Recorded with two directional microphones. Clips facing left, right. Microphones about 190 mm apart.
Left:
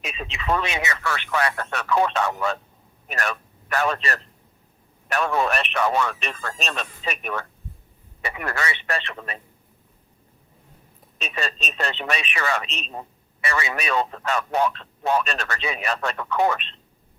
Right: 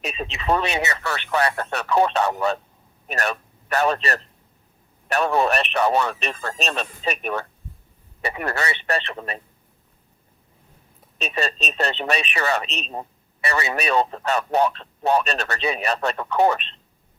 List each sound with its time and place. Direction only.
0.0 s speech: 35° right (ahead or behind)
11.2 s speech: 35° right (ahead or behind)